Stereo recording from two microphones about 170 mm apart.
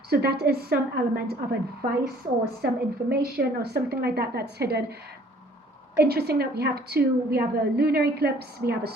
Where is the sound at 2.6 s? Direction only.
65° right (ahead or behind).